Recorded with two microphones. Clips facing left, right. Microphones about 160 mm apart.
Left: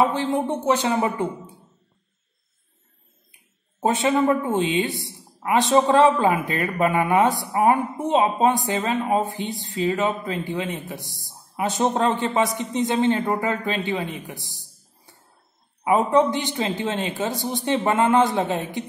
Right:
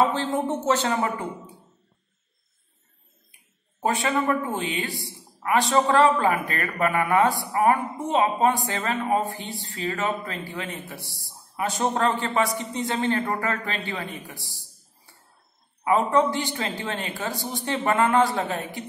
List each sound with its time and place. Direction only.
0.0 s a man's voice: 15° left (ahead or behind)
3.8 s a woman's voice: 20° left (ahead or behind)
15.8 s a woman's voice: 20° left (ahead or behind)